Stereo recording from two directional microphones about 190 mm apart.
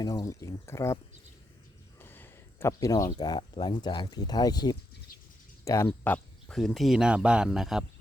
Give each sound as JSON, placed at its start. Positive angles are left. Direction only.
{"t": 0.0, "sound": "speech", "side_deg": 20}
{"t": 2.0, "sound": "speech", "side_deg": 10}
{"t": 6.5, "sound": "speech", "side_deg": 0}